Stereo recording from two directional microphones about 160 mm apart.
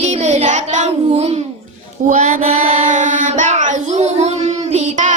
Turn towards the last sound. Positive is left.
turn(degrees=-45)  # may be behind; listen again after turning